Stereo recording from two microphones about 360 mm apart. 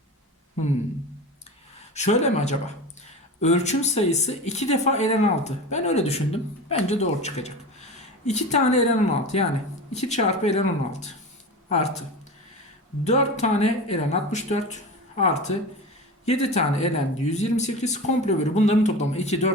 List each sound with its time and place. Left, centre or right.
2.0 s speech: centre
13.1 s speech: centre